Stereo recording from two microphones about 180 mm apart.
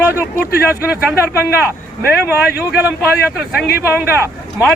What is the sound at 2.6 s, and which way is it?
Speech, 10° right (ahead or behind).